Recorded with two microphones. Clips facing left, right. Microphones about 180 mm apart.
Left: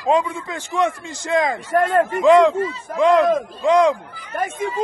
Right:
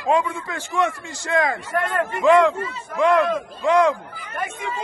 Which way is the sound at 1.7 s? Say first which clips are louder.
Left 9 dB; 45° left (ahead or behind).